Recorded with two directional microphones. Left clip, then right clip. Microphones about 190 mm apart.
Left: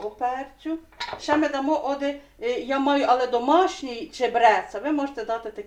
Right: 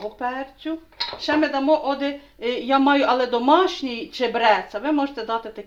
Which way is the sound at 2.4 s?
35° right (ahead or behind).